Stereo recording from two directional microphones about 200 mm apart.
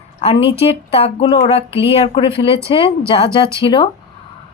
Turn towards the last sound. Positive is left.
turn(degrees=25)  # may be behind; listen again after turning